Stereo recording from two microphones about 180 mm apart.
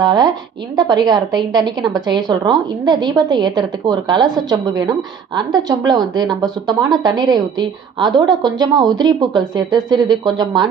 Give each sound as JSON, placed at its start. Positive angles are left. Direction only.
{"t": 0.0, "sound": "a woman's voice", "side_deg": -20}